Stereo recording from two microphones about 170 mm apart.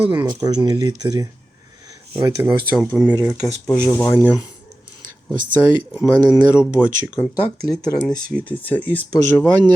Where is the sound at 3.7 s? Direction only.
20° left (ahead or behind).